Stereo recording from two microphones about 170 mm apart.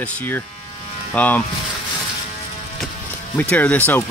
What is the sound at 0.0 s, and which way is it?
Speech, 10° left (ahead or behind).